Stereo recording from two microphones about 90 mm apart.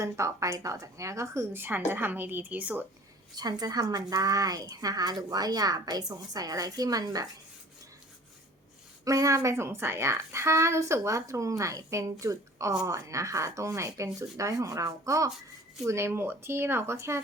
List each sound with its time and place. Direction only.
0.0 s a woman's voice: 35° right (ahead or behind); by 2.8 s 15° right (ahead or behind)
3.3 s a woman's voice: 50° right (ahead or behind)
9.0 s a woman's voice: 40° right (ahead or behind)